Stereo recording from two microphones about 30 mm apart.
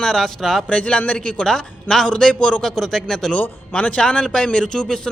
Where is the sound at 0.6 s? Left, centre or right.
Left.